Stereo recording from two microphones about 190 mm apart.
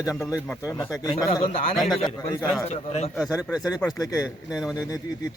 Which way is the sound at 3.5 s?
20° left (ahead or behind).